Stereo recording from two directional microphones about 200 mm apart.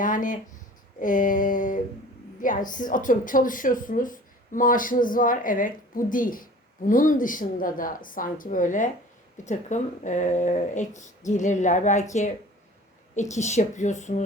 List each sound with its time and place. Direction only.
0.0 s speech: 40° left (ahead or behind)
13.3 s speech: 35° left (ahead or behind)